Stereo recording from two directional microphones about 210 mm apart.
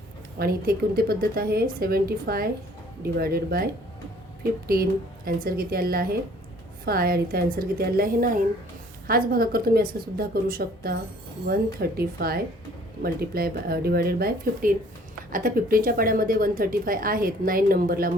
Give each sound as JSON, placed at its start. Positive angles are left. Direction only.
{"t": 0.3, "sound": "a woman's voice", "side_deg": -45}